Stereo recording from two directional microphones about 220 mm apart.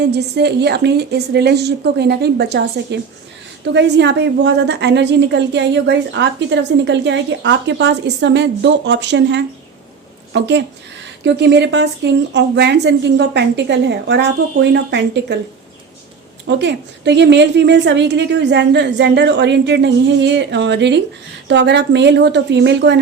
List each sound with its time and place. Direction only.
0.0 s a woman's voice: 50° right (ahead or behind)
16.5 s a woman's voice: 50° right (ahead or behind)